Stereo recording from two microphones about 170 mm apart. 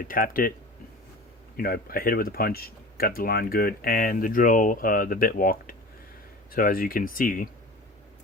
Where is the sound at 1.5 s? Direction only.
60° left (ahead or behind).